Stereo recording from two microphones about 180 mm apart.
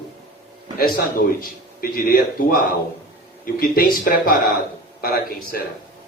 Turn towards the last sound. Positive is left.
turn(degrees=55)  # may be behind; listen again after turning